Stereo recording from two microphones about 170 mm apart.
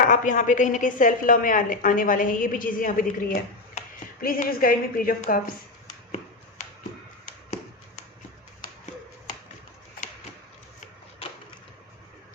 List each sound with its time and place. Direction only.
0.0 s a woman's voice: 45° left (ahead or behind)
3.8 s a sound: 40° left (ahead or behind)
4.2 s a woman's voice: 55° left (ahead or behind)